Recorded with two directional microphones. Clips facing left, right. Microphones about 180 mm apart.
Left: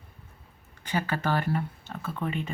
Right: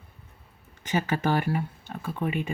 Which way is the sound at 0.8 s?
20° right (ahead or behind).